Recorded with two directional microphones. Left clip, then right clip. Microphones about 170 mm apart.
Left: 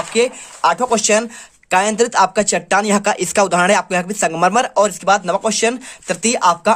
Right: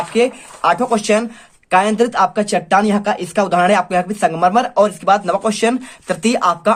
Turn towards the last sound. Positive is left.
turn(degrees=20)  # may be behind; listen again after turning